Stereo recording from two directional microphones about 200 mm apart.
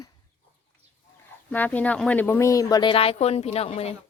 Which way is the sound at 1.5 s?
10° left (ahead or behind).